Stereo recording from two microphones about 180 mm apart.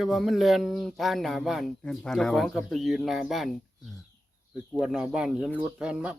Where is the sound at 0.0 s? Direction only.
Centre (ahead or behind).